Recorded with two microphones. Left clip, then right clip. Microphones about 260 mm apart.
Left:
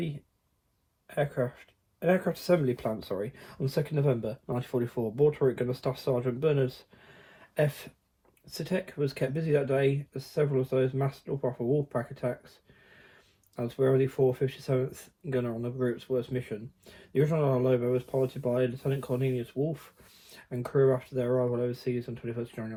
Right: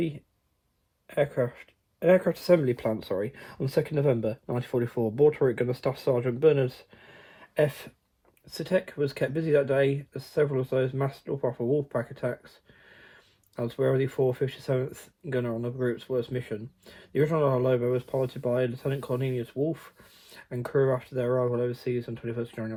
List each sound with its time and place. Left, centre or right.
1.1 s speech: right
13.6 s speech: right